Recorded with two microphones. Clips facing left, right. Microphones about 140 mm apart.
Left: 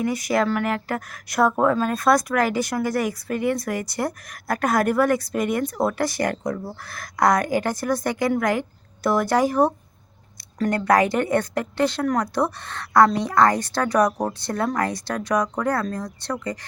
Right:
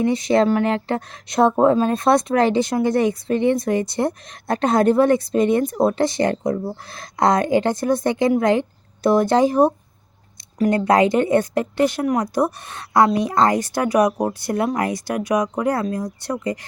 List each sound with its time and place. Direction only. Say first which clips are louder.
0.0 s speech: right 5 dB; 25° right (ahead or behind)